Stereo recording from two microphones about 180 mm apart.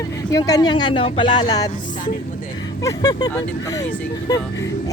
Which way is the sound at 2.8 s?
20° left (ahead or behind).